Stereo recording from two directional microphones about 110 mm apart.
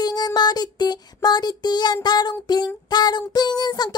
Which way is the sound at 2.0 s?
40° left (ahead or behind).